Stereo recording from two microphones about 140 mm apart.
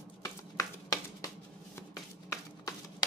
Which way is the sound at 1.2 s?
25° left (ahead or behind).